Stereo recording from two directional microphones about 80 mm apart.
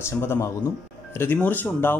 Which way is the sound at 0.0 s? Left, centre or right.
Left.